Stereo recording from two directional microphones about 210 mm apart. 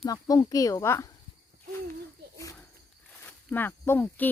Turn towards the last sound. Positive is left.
turn(degrees=10)  # may be behind; listen again after turning